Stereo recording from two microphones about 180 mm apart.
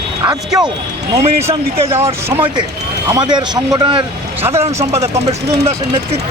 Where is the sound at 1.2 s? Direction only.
35° right (ahead or behind).